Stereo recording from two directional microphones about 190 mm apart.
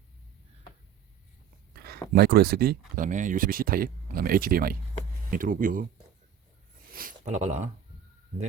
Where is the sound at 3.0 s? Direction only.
40° right (ahead or behind).